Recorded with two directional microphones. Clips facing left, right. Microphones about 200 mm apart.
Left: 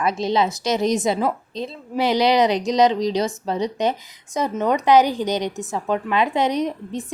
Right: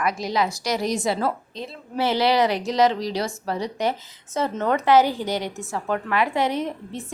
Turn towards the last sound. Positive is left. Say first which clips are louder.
# left 4 dB
turn(degrees=15)  # may be behind; listen again after turning